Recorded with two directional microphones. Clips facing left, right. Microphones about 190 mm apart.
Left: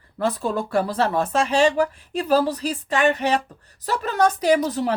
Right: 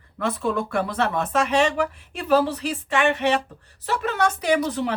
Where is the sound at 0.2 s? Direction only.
35° left (ahead or behind).